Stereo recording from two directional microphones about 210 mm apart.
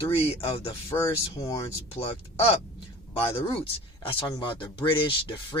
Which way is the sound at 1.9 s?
30° left (ahead or behind).